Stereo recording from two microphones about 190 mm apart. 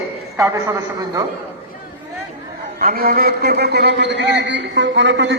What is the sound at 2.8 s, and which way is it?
A man's voice, 50° right (ahead or behind).